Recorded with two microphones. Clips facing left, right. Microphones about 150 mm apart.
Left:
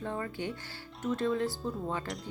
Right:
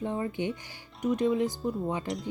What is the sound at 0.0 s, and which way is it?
A woman's voice, 20° right (ahead or behind).